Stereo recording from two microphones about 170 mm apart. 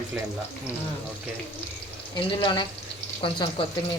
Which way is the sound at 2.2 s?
25° left (ahead or behind).